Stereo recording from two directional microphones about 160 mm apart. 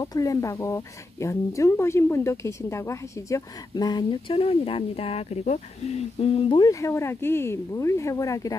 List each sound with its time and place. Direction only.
0.0 s speech: 20° left (ahead or behind)
6.7 s speech: 20° left (ahead or behind)